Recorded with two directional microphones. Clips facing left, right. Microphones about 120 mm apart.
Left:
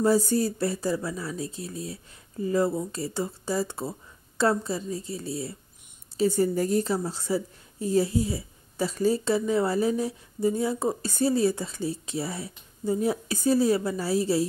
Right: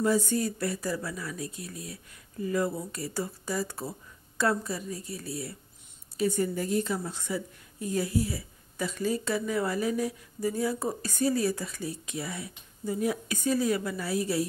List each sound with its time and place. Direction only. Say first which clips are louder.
0.0 s a woman's voice: left 4 dB; 35° left (ahead or behind)